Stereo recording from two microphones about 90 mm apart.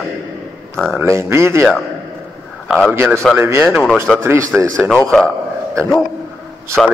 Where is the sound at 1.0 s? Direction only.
30° right (ahead or behind).